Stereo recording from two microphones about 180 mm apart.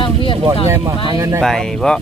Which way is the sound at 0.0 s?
30° left (ahead or behind).